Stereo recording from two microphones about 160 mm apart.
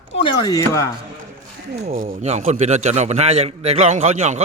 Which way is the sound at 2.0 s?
40° right (ahead or behind).